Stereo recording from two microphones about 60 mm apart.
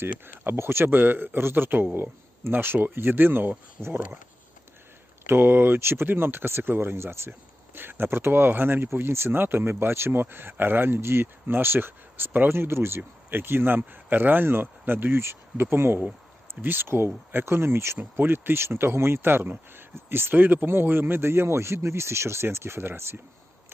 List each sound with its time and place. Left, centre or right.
0.0 s speech: right
5.2 s speech: right